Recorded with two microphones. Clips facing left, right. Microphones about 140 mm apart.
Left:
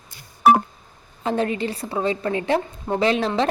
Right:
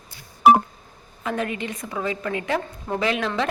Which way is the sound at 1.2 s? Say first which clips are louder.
Left 4 dB; 30° left (ahead or behind).